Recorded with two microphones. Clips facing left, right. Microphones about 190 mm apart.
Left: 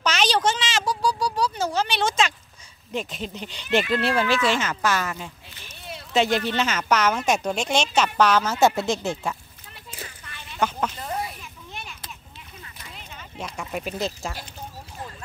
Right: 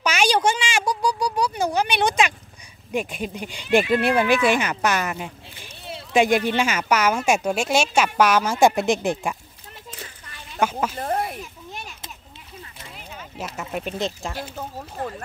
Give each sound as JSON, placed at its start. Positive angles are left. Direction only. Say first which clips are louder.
{"t": 0.0, "sound": "speech", "louder": "right 2 dB", "side_deg": -10}
{"t": 10.6, "sound": "speech", "louder": "right 2 dB", "side_deg": -10}
{"t": 11.0, "sound": "a sound", "louder": "right 5 dB", "side_deg": -55}
{"t": 12.9, "sound": "speech", "louder": "right 3 dB", "side_deg": -5}
{"t": 14.8, "sound": "speech", "louder": "right 8 dB", "side_deg": -55}